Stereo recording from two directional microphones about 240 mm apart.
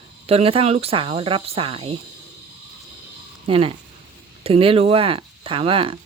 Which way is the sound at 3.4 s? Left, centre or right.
Right.